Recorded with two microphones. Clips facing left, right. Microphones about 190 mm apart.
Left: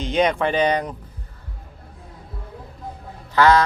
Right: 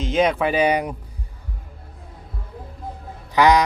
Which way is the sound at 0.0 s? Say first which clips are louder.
Even; centre (ahead or behind).